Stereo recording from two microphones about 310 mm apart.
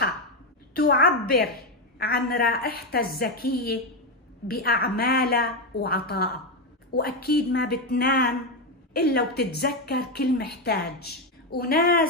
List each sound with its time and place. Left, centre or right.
0.7 s a woman's voice: left